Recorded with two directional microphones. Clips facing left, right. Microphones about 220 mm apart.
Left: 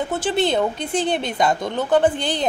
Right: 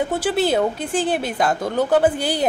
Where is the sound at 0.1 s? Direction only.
10° right (ahead or behind).